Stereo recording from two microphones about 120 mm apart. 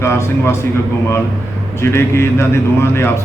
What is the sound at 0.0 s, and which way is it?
Speech, 20° left (ahead or behind).